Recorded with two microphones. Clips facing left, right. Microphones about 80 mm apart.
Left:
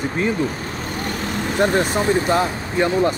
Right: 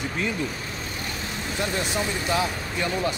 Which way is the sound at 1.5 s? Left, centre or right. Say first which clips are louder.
Left 9 dB; left.